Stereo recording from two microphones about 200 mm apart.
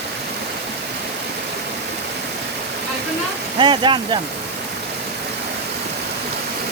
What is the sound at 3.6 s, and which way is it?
Speech, 25° right (ahead or behind).